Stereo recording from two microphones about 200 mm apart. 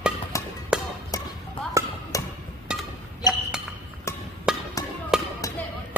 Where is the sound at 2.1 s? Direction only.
15° left (ahead or behind).